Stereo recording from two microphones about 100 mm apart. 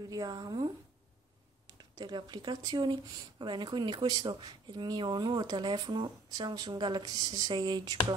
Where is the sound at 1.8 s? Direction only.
45° right (ahead or behind).